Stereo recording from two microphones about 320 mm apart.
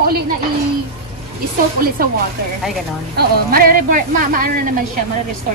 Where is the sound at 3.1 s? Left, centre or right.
Right.